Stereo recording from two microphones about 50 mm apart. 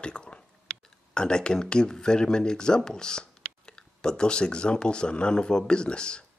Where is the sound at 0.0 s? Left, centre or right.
Centre.